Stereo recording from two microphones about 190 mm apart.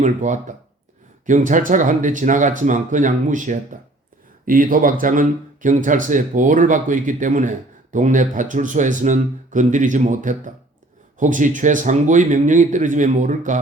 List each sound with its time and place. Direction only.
0.0 s a man's voice: 40° right (ahead or behind)